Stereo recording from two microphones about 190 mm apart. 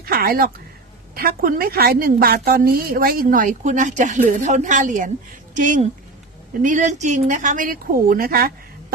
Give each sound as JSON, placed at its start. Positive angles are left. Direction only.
{"t": 0.0, "sound": "a woman's voice", "side_deg": -50}